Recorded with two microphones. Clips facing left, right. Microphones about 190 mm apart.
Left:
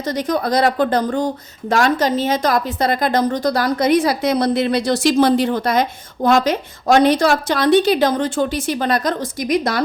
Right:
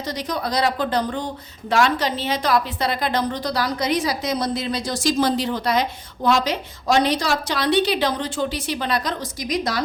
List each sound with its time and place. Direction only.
0.2 s a woman's voice: 50° left (ahead or behind)